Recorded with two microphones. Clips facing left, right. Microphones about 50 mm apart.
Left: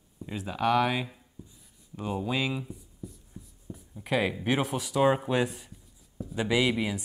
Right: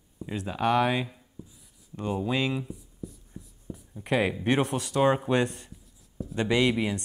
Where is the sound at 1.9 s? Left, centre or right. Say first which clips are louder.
Right 2 dB; centre.